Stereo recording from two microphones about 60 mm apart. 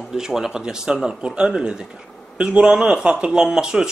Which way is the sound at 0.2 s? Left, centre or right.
Centre.